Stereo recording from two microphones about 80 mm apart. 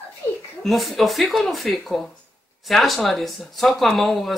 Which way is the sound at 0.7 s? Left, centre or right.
Centre.